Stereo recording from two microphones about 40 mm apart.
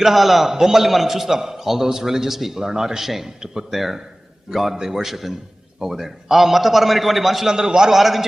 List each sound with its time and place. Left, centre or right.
0.0 s a man's voice: centre
3.7 s a man's voice: centre
7.5 s a man's voice: centre